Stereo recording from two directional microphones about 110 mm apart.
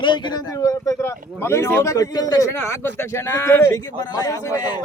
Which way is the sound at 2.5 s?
20° left (ahead or behind).